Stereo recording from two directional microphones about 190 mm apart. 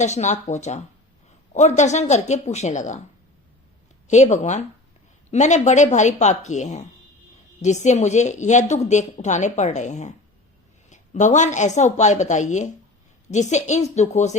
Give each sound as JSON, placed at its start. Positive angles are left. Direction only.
{"t": 0.0, "sound": "a woman's voice", "side_deg": 40}
{"t": 4.1, "sound": "a woman's voice", "side_deg": 40}